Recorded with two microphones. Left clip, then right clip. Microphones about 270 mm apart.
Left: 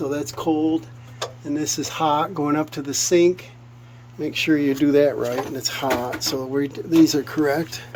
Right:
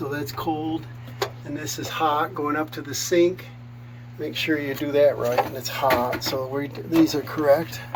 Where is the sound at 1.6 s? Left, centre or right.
Left.